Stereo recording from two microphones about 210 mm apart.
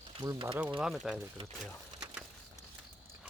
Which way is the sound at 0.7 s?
Centre (ahead or behind).